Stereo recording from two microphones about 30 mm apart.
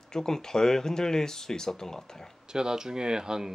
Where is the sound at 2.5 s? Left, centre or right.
Right.